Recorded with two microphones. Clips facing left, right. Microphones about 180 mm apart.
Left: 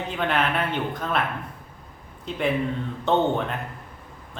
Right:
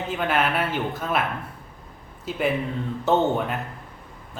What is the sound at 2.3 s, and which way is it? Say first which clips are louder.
A man's voice: even; 5° right (ahead or behind).